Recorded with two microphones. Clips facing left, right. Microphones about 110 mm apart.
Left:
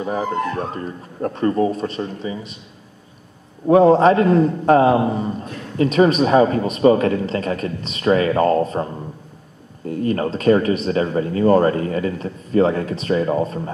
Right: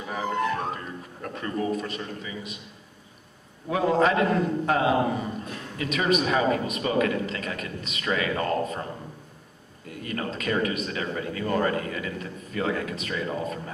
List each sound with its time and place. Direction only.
0.0 s speech: 35° left (ahead or behind)
3.6 s speech: 35° left (ahead or behind)
9.8 s speech: 35° left (ahead or behind)